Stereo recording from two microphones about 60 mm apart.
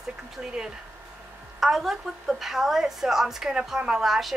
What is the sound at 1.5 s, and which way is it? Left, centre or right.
A woman's voice, centre.